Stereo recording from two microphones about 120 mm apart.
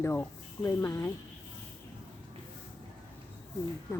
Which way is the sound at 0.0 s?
20° left (ahead or behind).